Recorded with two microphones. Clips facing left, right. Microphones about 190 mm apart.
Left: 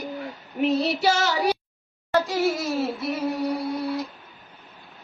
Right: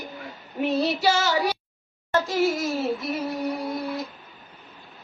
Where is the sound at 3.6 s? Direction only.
20° right (ahead or behind).